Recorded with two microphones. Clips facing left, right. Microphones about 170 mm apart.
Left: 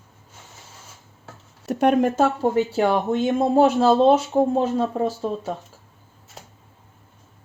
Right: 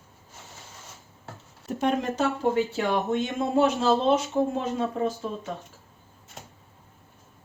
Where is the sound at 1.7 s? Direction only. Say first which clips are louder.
Left 7 dB; 65° left (ahead or behind).